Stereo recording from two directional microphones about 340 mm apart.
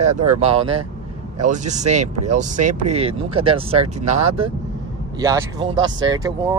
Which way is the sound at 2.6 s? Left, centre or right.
Right.